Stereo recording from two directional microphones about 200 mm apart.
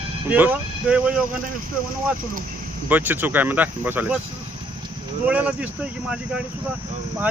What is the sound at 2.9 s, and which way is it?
Speech, 10° right (ahead or behind).